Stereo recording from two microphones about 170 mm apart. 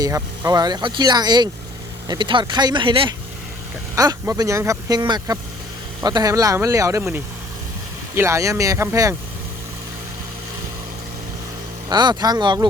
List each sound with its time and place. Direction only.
0.0 s speech: 20° right (ahead or behind)
11.9 s speech: 25° right (ahead or behind)